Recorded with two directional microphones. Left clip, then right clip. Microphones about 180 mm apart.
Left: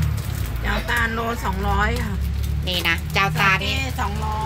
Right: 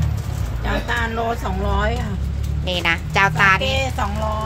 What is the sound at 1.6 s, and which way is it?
Speech, 25° right (ahead or behind).